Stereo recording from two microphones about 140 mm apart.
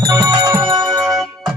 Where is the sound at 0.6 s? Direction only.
35° right (ahead or behind).